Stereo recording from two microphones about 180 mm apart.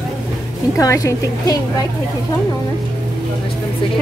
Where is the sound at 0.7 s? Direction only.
20° left (ahead or behind).